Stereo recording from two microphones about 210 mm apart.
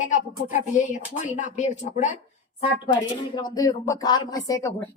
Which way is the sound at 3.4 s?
20° left (ahead or behind).